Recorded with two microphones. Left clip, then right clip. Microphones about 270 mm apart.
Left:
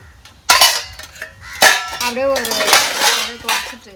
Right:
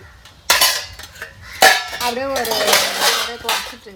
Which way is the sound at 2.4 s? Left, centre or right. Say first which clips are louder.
Even; centre.